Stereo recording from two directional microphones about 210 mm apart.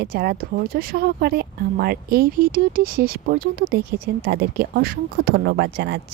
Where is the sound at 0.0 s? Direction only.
50° right (ahead or behind).